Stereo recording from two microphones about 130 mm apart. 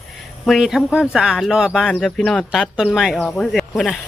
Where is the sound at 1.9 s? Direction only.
5° left (ahead or behind).